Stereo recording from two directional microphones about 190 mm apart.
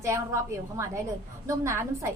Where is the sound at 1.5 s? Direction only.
15° right (ahead or behind).